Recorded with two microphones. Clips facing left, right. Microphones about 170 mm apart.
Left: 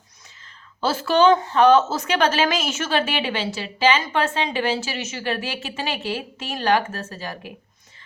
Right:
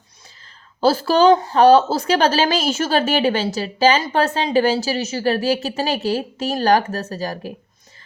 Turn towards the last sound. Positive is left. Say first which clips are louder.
# right 7 dB
turn(degrees=-40)  # may be behind; listen again after turning